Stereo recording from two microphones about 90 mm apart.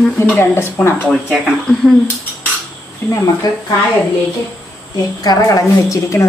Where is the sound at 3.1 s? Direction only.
35° left (ahead or behind).